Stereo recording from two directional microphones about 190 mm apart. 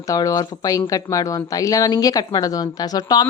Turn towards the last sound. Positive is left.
turn(degrees=20)  # may be behind; listen again after turning